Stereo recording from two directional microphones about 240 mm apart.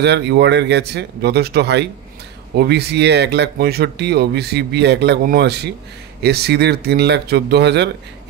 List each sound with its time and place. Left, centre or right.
0.0 s speech: right